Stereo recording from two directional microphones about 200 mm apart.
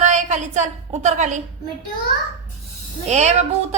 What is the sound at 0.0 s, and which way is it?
A woman's voice, 35° right (ahead or behind).